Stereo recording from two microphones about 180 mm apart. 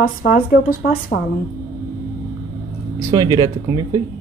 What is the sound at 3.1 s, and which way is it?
Speech, 20° right (ahead or behind).